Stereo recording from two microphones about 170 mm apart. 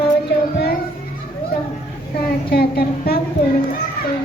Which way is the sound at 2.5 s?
65° left (ahead or behind).